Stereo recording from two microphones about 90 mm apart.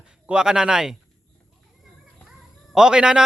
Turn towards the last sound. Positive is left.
turn(degrees=-10)  # may be behind; listen again after turning